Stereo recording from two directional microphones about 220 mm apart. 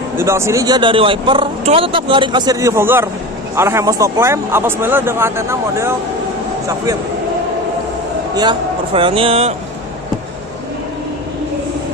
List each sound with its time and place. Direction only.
0.2 s speech: 10° right (ahead or behind)
8.4 s speech: 20° right (ahead or behind)